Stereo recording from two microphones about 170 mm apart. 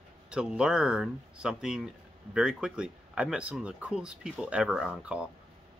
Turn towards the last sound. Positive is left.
turn(degrees=-5)  # may be behind; listen again after turning